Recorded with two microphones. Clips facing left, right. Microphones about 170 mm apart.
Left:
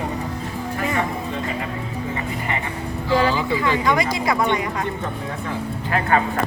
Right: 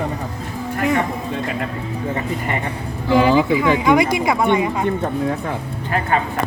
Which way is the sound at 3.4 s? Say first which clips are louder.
Right 5 dB; 20° right (ahead or behind).